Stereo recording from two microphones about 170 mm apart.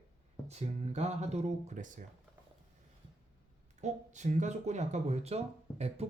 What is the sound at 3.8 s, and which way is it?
Speech, 45° right (ahead or behind).